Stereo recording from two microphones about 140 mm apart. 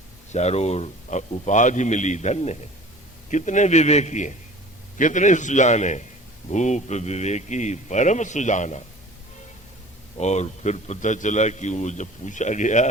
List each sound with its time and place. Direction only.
0.3 s a man's voice: 50° left (ahead or behind)
10.2 s a man's voice: 55° left (ahead or behind)